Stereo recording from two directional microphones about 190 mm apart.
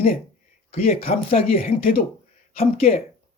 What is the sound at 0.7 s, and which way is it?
Speech, 30° left (ahead or behind).